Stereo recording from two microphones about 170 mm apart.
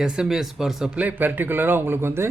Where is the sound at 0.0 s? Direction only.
5° right (ahead or behind).